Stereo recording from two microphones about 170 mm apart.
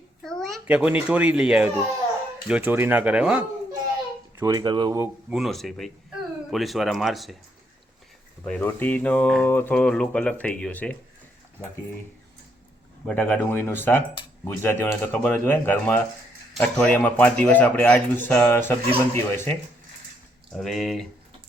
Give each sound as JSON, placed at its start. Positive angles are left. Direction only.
{"t": 0.2, "sound": "a sound", "side_deg": 5}
{"t": 0.7, "sound": "speech", "side_deg": -5}
{"t": 4.4, "sound": "speech", "side_deg": -25}
{"t": 5.3, "sound": "speech", "side_deg": 0}
{"t": 8.4, "sound": "speech", "side_deg": 10}
{"t": 13.1, "sound": "speech", "side_deg": 10}
{"t": 20.5, "sound": "speech", "side_deg": 0}